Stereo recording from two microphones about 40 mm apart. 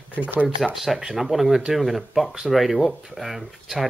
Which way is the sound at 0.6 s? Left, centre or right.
Centre.